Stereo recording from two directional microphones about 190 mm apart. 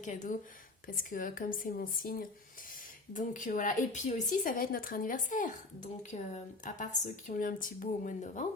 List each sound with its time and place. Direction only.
0.0 s a woman's voice: 40° left (ahead or behind)